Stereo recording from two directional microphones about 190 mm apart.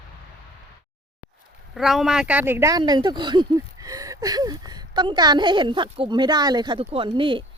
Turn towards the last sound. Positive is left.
turn(degrees=-25)  # may be behind; listen again after turning